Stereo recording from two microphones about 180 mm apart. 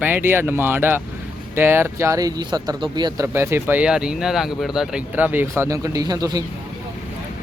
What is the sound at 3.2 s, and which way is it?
Speech, 15° right (ahead or behind).